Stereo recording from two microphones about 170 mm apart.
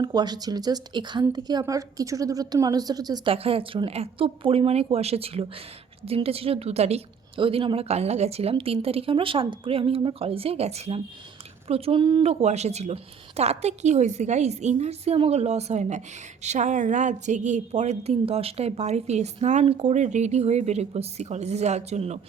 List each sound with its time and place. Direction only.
0.0 s a woman's voice: 25° right (ahead or behind)
3.3 s a woman's voice: 35° right (ahead or behind)